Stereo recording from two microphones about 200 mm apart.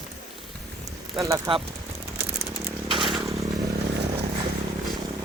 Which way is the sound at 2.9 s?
Centre (ahead or behind).